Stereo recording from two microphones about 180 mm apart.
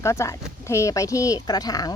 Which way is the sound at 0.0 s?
15° left (ahead or behind).